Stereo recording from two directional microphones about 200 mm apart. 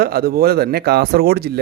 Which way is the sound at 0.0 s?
50° right (ahead or behind).